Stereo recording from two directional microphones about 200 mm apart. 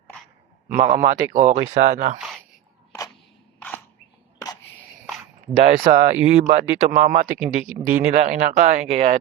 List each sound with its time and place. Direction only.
0.7 s speech: 35° right (ahead or behind)
5.6 s speech: 35° right (ahead or behind)
7.3 s speech: 10° right (ahead or behind)
8.1 s speech: 35° right (ahead or behind)